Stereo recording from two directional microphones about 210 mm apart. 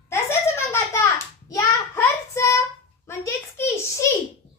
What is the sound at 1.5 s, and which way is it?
Child singing, 15° left (ahead or behind).